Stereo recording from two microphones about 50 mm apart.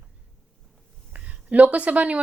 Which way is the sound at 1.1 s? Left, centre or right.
Right.